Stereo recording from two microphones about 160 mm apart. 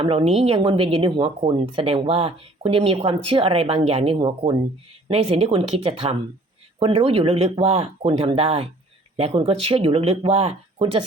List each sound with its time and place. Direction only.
0.0 s speech: 35° right (ahead or behind)